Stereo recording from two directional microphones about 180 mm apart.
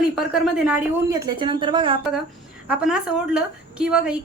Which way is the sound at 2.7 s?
5° right (ahead or behind).